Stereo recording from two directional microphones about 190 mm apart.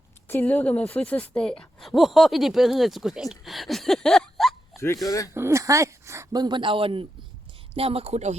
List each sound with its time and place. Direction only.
0.3 s a woman's voice: 10° left (ahead or behind)
5.0 s speech: 15° left (ahead or behind)
5.3 s speech: 15° right (ahead or behind); by 8.4 s 35° right (ahead or behind)